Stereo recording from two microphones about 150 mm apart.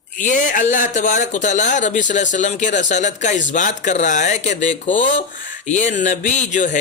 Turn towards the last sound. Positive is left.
turn(degrees=55)  # may be behind; listen again after turning